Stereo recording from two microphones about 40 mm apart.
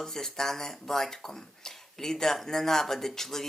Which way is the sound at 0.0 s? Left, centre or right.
Centre.